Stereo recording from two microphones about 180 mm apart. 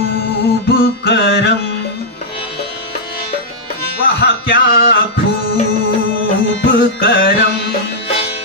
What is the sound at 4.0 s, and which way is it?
Music, 65° left (ahead or behind).